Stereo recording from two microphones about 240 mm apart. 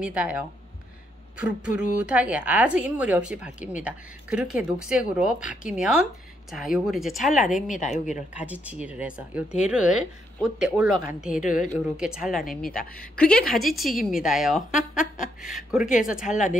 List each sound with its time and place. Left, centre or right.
0.0 s a woman's voice: centre
2.0 s a woman's voice: centre
7.8 s speech: left
8.4 s a woman's voice: centre
11.3 s speech: left
12.0 s a woman's voice: centre